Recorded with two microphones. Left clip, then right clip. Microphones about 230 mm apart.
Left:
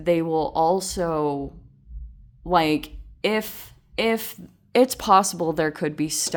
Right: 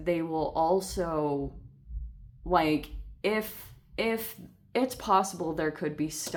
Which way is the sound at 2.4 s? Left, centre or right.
Left.